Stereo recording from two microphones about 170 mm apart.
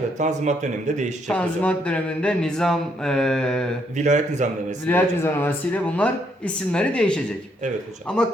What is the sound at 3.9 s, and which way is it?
Speech, 45° right (ahead or behind).